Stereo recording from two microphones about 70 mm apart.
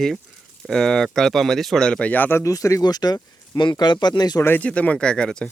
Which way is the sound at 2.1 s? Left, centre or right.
Left.